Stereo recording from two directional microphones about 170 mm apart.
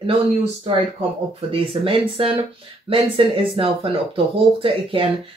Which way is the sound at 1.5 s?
35° right (ahead or behind).